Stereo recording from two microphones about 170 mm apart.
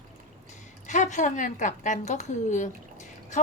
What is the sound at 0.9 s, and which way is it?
A woman's voice, 45° left (ahead or behind).